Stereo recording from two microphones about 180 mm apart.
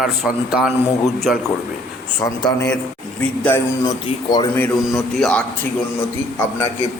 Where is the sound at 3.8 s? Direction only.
20° left (ahead or behind).